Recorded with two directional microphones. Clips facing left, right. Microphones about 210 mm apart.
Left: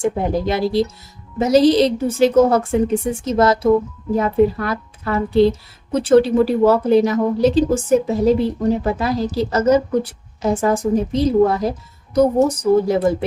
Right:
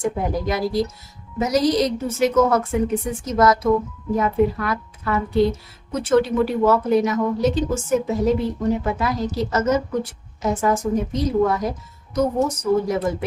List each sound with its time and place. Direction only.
0.0 s a woman's voice: 25° left (ahead or behind)